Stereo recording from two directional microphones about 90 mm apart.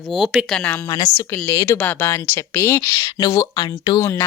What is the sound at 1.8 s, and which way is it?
A woman's voice, 25° left (ahead or behind).